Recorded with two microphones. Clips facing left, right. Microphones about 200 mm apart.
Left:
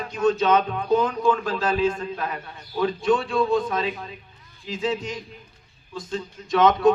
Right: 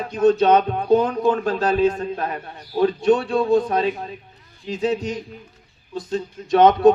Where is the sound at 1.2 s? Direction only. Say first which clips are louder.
Right 3 dB; 40° right (ahead or behind).